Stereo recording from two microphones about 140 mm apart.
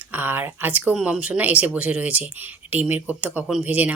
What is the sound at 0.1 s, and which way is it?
Speech, 15° right (ahead or behind).